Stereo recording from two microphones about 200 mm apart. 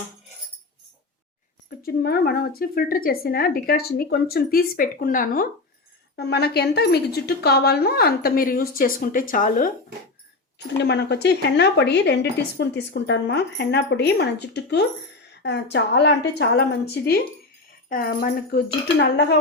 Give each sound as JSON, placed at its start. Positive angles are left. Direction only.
{"t": 1.8, "sound": "speech", "side_deg": 50}
{"t": 6.1, "sound": "speech", "side_deg": 55}
{"t": 10.8, "sound": "a woman's voice", "side_deg": 60}